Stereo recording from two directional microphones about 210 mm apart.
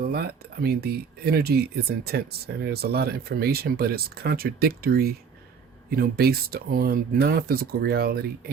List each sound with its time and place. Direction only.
0.1 s speech: 50° right (ahead or behind)